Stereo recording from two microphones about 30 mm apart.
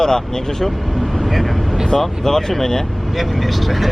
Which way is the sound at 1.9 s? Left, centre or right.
Centre.